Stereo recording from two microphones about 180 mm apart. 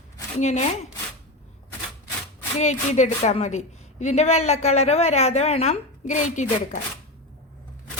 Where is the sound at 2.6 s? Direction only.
40° left (ahead or behind).